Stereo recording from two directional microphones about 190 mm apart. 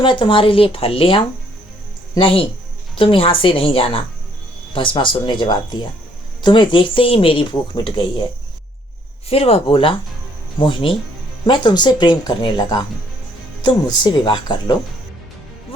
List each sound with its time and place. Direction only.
0.0 s speech: 25° left (ahead or behind)
9.3 s speech: 30° left (ahead or behind)